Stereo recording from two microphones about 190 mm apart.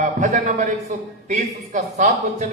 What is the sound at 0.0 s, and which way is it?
A man's voice, 40° right (ahead or behind).